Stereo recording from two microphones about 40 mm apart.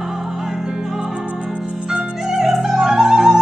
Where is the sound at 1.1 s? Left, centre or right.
Right.